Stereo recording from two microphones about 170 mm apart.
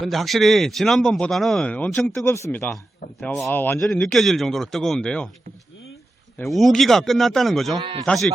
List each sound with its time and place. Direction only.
0.0 s a man's voice: centre (ahead or behind)
6.4 s a man's voice: centre (ahead or behind)
7.8 s a man's voice: 30° right (ahead or behind)
8.0 s a man's voice: 5° left (ahead or behind)